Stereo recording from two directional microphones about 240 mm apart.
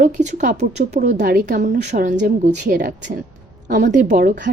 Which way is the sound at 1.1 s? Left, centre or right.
Right.